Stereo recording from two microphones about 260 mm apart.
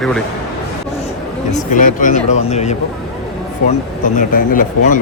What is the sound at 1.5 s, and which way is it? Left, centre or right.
Speech, left.